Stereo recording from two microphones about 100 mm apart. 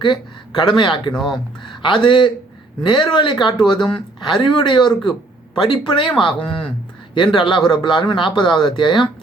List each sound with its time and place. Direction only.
0.0 s speech: 50° left (ahead or behind)
1.1 s speech: 5° left (ahead or behind)
1.6 s speech: 50° left (ahead or behind)